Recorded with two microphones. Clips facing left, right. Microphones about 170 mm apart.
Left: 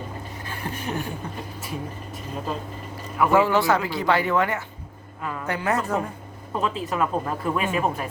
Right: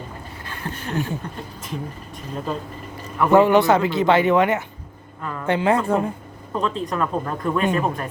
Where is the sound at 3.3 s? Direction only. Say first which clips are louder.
Right 6 dB; 20° right (ahead or behind).